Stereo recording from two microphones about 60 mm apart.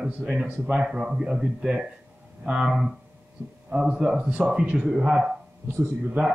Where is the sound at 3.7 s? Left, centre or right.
Centre.